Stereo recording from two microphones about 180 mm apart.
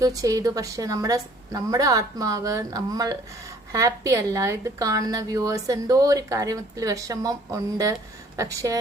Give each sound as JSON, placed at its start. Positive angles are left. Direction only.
{"t": 0.0, "sound": "a woman's voice", "side_deg": -20}